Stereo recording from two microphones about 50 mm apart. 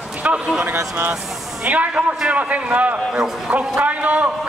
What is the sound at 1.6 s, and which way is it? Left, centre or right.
A man's voice, right.